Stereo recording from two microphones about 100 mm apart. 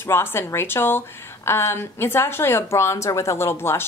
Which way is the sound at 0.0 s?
25° left (ahead or behind).